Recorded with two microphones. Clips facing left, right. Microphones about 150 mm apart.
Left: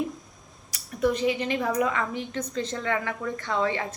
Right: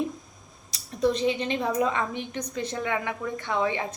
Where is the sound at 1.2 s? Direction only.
25° right (ahead or behind).